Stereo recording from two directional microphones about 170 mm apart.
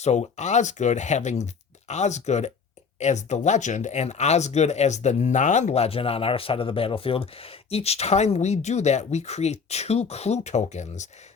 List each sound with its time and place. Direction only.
0.0 s speech: 40° left (ahead or behind)